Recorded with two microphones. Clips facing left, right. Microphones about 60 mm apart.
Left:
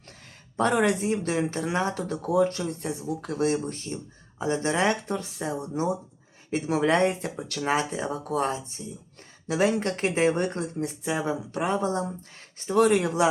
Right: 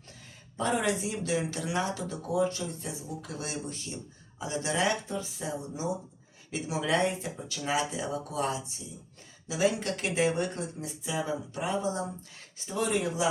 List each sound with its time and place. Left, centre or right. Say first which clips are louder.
0.5 s speech: left 6 dB; left
5.0 s speech: left 5 dB; left
7.3 s speech: left 4 dB; left
9.5 s speech: left 4 dB; left
9.9 s speech: left 4 dB; left